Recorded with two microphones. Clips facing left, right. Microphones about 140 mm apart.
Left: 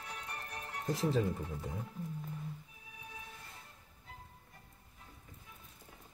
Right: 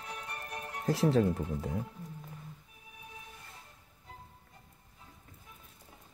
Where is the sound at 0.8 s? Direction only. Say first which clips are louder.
Right 6 dB; 85° right.